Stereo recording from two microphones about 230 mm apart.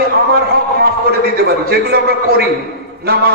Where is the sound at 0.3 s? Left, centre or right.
Right.